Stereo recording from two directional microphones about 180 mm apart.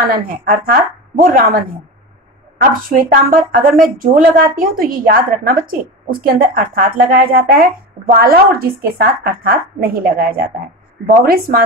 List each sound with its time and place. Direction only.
0.1 s a woman's voice: 50° right (ahead or behind)
2.7 s a woman's voice: 50° right (ahead or behind)